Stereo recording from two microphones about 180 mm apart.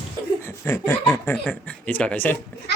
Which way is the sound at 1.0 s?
10° left (ahead or behind).